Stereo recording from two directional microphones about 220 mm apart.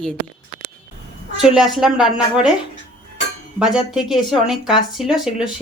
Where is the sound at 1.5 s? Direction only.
Centre (ahead or behind).